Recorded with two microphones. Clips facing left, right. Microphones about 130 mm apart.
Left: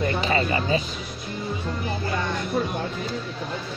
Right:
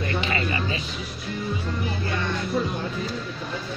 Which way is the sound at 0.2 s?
35° left (ahead or behind).